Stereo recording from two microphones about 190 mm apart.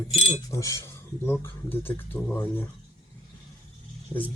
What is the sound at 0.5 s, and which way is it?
Speech, 15° left (ahead or behind).